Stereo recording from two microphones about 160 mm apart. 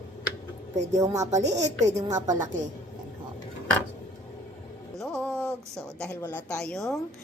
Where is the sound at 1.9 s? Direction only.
20° right (ahead or behind).